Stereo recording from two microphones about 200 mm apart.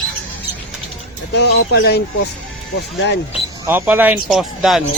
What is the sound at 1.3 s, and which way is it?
Speech, 55° left (ahead or behind).